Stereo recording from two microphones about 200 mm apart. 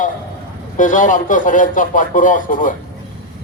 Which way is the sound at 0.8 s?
40° left (ahead or behind).